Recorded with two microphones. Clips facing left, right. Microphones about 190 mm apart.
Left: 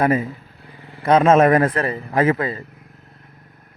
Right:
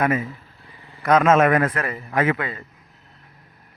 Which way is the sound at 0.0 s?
35° left (ahead or behind).